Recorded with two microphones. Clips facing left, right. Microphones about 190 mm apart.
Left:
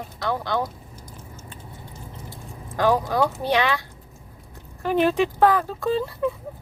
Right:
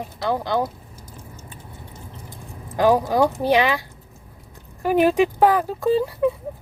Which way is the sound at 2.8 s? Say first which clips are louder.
Right 3 dB; 15° right (ahead or behind).